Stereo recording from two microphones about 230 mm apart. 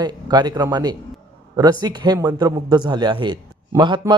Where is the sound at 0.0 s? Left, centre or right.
Centre.